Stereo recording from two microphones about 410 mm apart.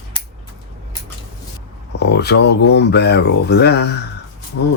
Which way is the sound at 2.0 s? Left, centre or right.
Left.